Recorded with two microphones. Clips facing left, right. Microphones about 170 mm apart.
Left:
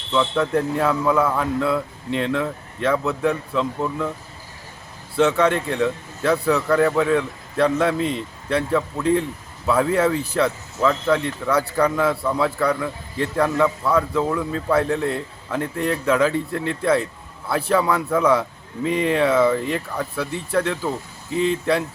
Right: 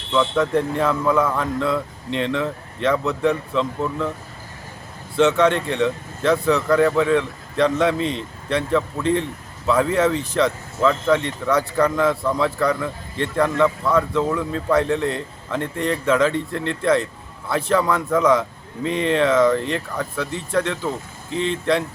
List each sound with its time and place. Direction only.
0.1 s speech: 5° left (ahead or behind)
5.1 s speech: 5° left (ahead or behind)